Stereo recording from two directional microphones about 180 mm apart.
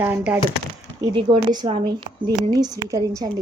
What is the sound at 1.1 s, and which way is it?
Speech, 30° right (ahead or behind).